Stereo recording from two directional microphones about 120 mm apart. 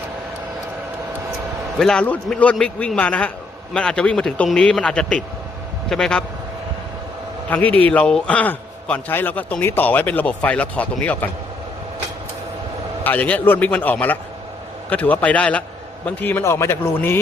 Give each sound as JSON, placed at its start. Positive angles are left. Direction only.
{"t": 1.8, "sound": "a man's voice", "side_deg": 5}
{"t": 7.5, "sound": "a man's voice", "side_deg": 15}
{"t": 13.1, "sound": "a man's voice", "side_deg": 15}